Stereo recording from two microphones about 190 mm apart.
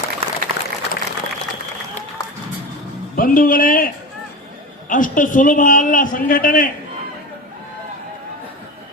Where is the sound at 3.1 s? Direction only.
50° left (ahead or behind).